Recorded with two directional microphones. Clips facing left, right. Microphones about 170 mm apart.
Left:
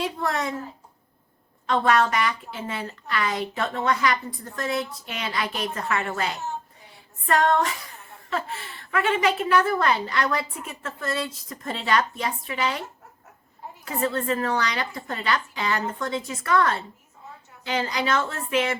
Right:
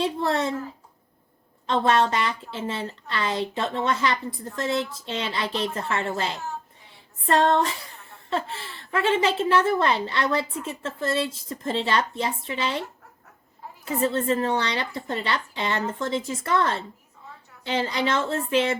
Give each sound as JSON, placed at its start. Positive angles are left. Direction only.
{"t": 0.0, "sound": "a woman's voice", "side_deg": -25}
{"t": 1.6, "sound": "a woman's voice", "side_deg": -25}
{"t": 13.8, "sound": "a woman's voice", "side_deg": -25}